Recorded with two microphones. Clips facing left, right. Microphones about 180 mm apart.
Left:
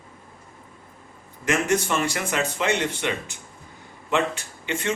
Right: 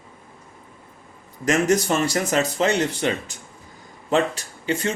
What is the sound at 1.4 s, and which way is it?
Speech, 40° right (ahead or behind).